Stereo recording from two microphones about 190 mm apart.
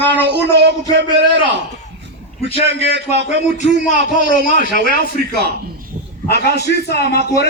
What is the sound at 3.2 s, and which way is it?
A man's voice, 40° left (ahead or behind).